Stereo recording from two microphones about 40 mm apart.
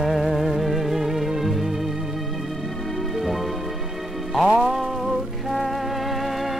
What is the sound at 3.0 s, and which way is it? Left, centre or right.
Music, centre.